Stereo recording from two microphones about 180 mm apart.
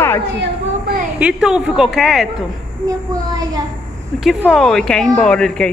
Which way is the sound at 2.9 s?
20° right (ahead or behind).